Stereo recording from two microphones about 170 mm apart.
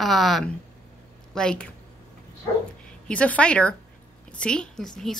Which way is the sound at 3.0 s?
10° left (ahead or behind).